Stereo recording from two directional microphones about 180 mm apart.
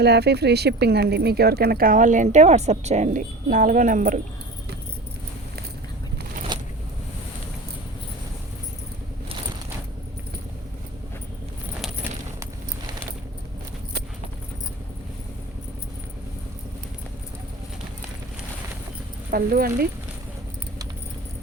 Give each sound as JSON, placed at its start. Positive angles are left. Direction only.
{"t": 0.0, "sound": "speech", "side_deg": -65}
{"t": 6.5, "sound": "vehicle", "side_deg": -25}
{"t": 19.3, "sound": "speech", "side_deg": -55}